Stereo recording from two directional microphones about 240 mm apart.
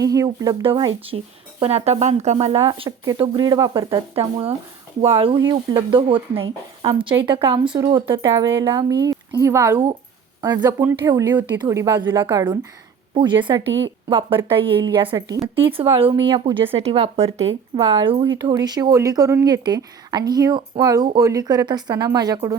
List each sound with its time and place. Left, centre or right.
0.0 s speech: centre